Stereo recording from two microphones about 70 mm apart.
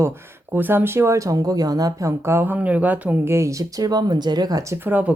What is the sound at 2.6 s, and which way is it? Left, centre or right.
Speech, right.